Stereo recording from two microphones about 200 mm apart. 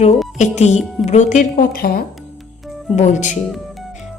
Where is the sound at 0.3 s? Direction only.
35° left (ahead or behind).